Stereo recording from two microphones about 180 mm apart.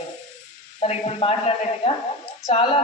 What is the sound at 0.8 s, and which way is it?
A man's voice, 35° left (ahead or behind).